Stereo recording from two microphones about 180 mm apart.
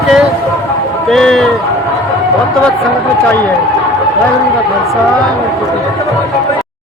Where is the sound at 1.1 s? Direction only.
Centre (ahead or behind).